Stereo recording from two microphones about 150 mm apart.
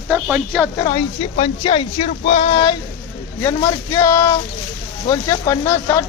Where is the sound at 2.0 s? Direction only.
50° left (ahead or behind).